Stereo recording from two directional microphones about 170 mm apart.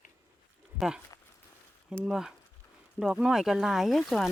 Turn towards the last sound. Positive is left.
turn(degrees=0)  # may be behind; listen again after turning